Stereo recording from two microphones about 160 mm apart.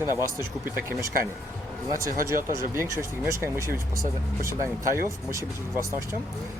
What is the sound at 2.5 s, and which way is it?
Speech, 20° right (ahead or behind).